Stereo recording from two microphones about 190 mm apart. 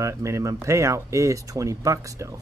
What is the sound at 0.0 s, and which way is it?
Speech, 15° right (ahead or behind).